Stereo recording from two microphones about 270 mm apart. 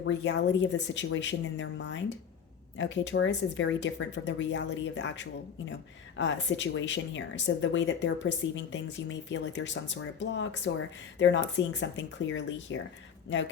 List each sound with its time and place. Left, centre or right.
0.0 s speech: left